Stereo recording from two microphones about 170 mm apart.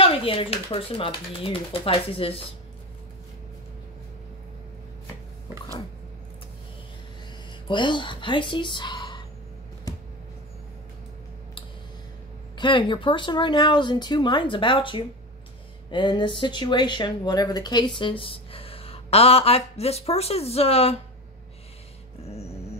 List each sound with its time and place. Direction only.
0.0 s speech: 30° left (ahead or behind)
7.6 s speech: 25° left (ahead or behind)
12.5 s speech: 30° left (ahead or behind)